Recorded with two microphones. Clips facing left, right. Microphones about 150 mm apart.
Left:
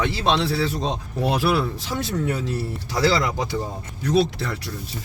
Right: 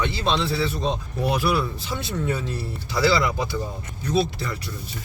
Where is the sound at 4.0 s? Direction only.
80° left.